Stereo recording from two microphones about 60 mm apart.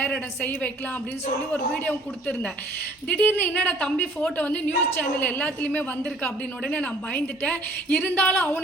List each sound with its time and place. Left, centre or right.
3.1 s a woman's voice: left
3.8 s a woman's voice: centre